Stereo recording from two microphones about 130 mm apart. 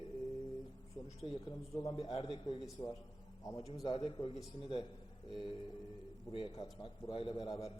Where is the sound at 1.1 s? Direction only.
50° left (ahead or behind).